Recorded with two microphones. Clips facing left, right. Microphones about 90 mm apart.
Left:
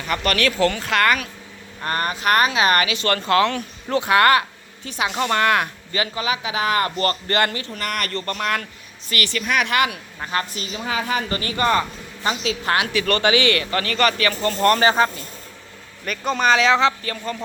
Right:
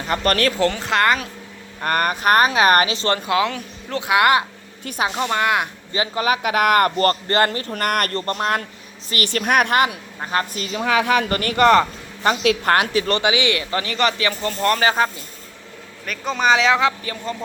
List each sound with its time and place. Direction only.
0.0 s speech: 35° right (ahead or behind)
1.8 s speech: 50° right (ahead or behind); by 3.2 s 30° right (ahead or behind)
3.2 s speech: 10° right (ahead or behind)
4.1 s speech: 10° right (ahead or behind)
4.8 s speech: 50° right (ahead or behind)
5.1 s speech: 10° right (ahead or behind)
6.1 s a woman's voice: 50° right (ahead or behind)
6.9 s speech: 40° right (ahead or behind)
8.2 s speech: 35° right (ahead or behind)
9.3 s a woman's voice: 55° right (ahead or behind)
12.2 s a woman's voice: 55° right (ahead or behind)
13.1 s speech: 15° right (ahead or behind); by 16.5 s centre (ahead or behind)
16.5 s speech: 15° right (ahead or behind)